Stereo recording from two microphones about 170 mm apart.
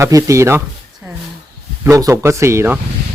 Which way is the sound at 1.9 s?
20° right (ahead or behind).